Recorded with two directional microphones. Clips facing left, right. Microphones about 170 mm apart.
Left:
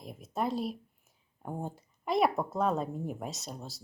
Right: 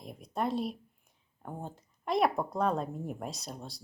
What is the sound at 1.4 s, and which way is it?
Speech, 10° left (ahead or behind).